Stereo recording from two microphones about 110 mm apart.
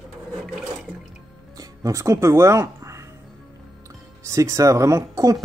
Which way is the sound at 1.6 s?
30° right (ahead or behind).